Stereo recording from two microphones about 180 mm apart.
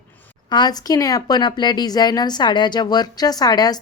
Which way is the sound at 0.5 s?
20° left (ahead or behind).